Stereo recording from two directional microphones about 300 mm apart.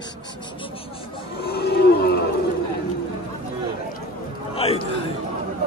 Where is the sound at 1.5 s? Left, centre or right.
Left.